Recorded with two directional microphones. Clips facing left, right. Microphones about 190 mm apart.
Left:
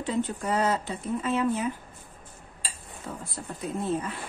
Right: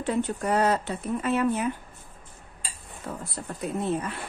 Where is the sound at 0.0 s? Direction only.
65° right (ahead or behind).